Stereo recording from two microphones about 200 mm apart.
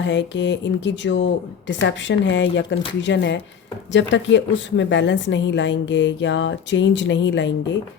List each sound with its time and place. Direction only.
0.0 s a woman's voice: 60° left (ahead or behind)